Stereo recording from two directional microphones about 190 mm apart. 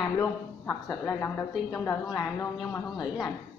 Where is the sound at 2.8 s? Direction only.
Centre (ahead or behind).